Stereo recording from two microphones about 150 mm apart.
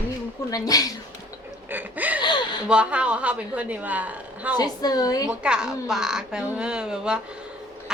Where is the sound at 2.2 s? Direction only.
30° left (ahead or behind).